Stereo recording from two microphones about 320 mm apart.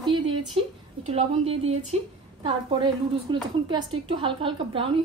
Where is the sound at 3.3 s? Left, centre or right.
Centre.